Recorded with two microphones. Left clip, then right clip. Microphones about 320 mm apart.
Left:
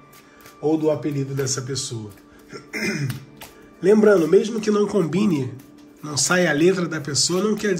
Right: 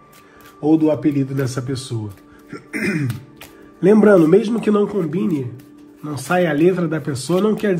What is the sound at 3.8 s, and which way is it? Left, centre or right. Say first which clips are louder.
A man's voice: right 3 dB; centre.